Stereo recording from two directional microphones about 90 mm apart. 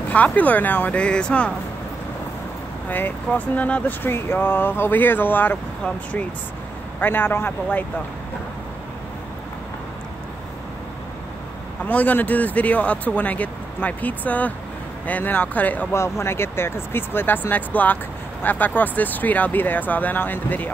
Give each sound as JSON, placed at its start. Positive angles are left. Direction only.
{"t": 0.1, "sound": "speech", "side_deg": 15}
{"t": 2.9, "sound": "speech", "side_deg": 20}
{"t": 7.0, "sound": "speech", "side_deg": 25}
{"t": 11.8, "sound": "speech", "side_deg": 20}
{"t": 15.9, "sound": "speech", "side_deg": 30}